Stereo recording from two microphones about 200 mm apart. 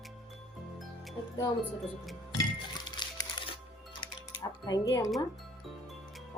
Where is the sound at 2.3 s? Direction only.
20° left (ahead or behind).